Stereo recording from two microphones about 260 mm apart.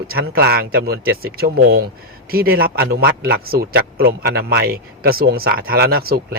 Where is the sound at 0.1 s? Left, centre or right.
Right.